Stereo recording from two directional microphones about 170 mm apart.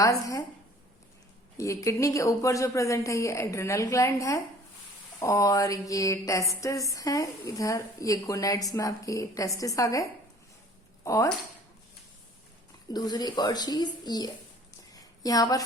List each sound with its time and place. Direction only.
0.0 s a woman's voice: 20° left (ahead or behind)
1.5 s a woman's voice: 20° left (ahead or behind)
12.9 s a woman's voice: 25° left (ahead or behind)
14.9 s a sound: 20° left (ahead or behind)